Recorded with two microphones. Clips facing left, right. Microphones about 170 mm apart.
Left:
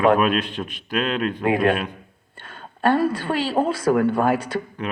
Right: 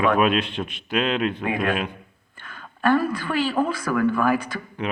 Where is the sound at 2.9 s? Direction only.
30° left (ahead or behind).